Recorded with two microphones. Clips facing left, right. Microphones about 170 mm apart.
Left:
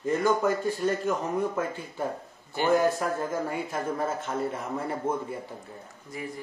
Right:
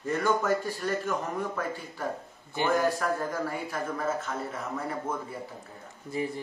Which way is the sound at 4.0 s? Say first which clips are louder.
Left 2 dB; 30° left (ahead or behind).